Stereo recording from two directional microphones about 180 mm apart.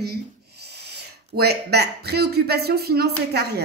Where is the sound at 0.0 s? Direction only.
65° right (ahead or behind).